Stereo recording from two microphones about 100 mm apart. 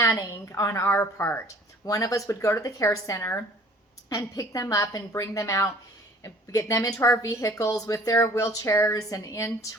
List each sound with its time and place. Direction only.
0.0 s a woman's voice: 35° left (ahead or behind)
1.9 s speech: 35° left (ahead or behind)